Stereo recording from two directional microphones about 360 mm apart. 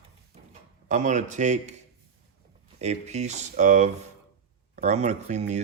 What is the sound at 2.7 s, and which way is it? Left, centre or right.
Speech, centre.